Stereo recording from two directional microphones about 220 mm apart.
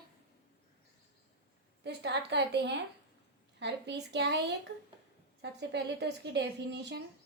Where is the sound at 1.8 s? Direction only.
50° right (ahead or behind).